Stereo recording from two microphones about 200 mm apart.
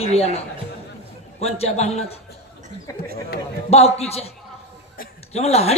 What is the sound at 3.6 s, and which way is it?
Speech, 30° left (ahead or behind).